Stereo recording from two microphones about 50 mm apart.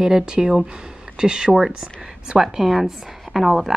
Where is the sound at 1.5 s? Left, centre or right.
Centre.